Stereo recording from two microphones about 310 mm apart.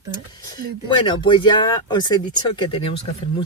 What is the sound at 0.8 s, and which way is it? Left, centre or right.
Speech, centre.